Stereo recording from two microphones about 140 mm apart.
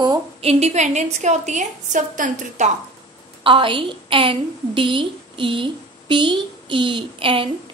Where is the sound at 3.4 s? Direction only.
40° right (ahead or behind).